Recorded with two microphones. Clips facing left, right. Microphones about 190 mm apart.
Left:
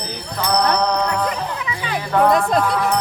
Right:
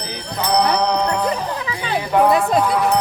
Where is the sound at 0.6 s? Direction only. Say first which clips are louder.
Even; 10° right (ahead or behind).